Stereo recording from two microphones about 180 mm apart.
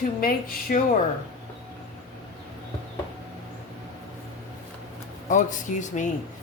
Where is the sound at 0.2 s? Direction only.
55° left (ahead or behind).